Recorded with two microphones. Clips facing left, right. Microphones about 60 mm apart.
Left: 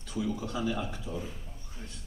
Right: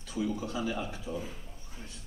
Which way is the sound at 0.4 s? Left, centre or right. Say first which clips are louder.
Left 1 dB; right.